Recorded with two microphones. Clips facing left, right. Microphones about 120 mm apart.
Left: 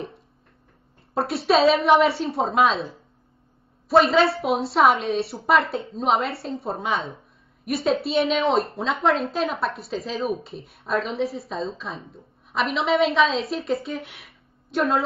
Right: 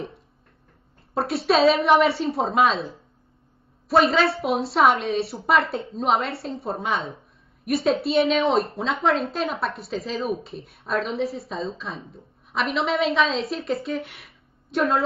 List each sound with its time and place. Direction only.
1.1 s a woman's voice: centre (ahead or behind)